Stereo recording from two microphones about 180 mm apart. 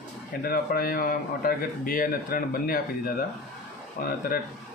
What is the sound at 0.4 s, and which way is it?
Speech, 55° left (ahead or behind).